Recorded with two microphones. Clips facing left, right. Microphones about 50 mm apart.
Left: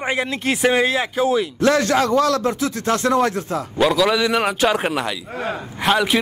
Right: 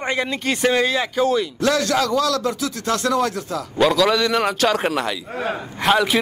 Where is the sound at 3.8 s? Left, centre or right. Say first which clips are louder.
Even; centre.